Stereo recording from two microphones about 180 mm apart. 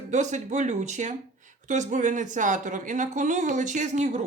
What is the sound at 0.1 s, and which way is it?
Speech, 40° right (ahead or behind).